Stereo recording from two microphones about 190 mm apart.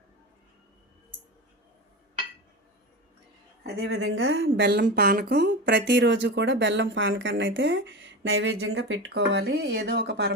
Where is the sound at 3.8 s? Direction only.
80° right.